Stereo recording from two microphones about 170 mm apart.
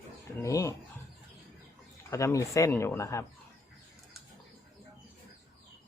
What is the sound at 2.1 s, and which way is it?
Speech, 15° left (ahead or behind).